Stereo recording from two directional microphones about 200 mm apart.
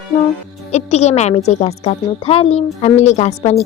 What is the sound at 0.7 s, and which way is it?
A woman's voice, 35° left (ahead or behind).